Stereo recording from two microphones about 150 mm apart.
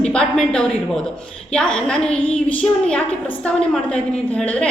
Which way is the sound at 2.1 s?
40° left (ahead or behind).